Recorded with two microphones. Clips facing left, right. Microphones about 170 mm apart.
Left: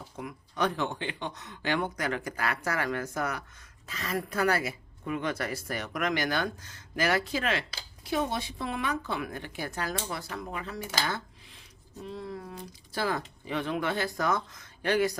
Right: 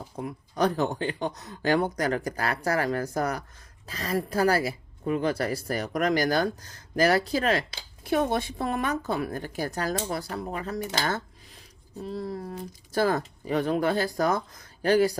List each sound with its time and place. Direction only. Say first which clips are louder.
0.2 s a woman's voice: right 5 dB; 35° right (ahead or behind)
8.0 s a woman's voice: right 5 dB; 55° right (ahead or behind); by 15.2 s 35° right (ahead or behind)